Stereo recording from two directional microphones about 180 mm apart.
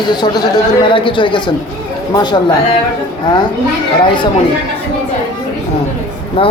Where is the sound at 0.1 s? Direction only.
25° left (ahead or behind).